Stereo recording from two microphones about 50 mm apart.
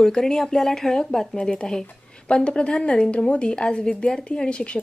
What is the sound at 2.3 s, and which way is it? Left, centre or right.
Speech, left.